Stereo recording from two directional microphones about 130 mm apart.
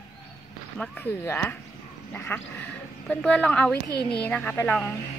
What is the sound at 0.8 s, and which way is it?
Speech, 15° left (ahead or behind).